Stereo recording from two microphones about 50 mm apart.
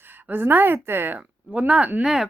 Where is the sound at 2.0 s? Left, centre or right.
Centre.